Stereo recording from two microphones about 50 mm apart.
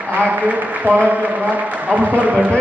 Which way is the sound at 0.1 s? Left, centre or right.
Right.